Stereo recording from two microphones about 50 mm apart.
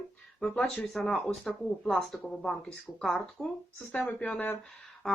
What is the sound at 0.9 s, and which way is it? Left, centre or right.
Speech, centre.